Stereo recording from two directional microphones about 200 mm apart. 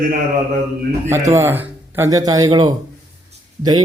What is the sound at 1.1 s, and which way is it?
A man's voice, 15° right (ahead or behind).